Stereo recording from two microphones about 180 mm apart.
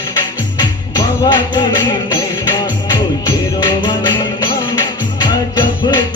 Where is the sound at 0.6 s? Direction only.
25° left (ahead or behind).